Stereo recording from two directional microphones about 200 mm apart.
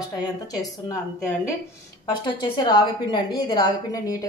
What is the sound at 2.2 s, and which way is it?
A woman's voice, 25° left (ahead or behind).